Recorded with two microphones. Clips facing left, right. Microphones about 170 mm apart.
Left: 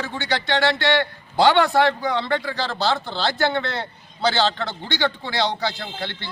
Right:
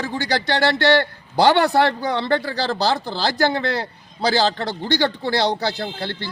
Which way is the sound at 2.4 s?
40° right (ahead or behind).